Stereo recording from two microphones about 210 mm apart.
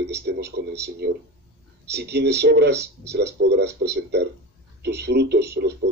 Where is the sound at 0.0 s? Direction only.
55° right (ahead or behind).